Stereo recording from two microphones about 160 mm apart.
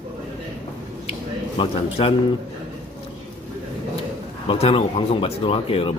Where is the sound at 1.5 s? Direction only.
40° left (ahead or behind).